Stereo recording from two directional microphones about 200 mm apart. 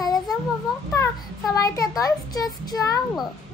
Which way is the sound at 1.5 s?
15° left (ahead or behind).